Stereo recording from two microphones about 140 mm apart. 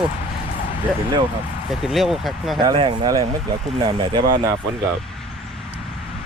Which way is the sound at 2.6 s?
35° right (ahead or behind).